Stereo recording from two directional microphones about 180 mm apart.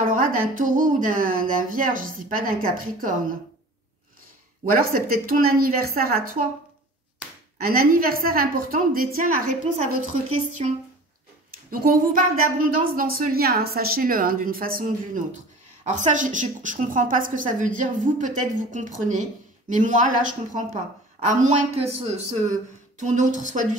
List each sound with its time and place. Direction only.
0.0 s a woman's voice: 50° right (ahead or behind)
4.7 s a woman's voice: 55° right (ahead or behind)
7.5 s a woman's voice: 55° right (ahead or behind)
11.7 s a woman's voice: 50° right (ahead or behind)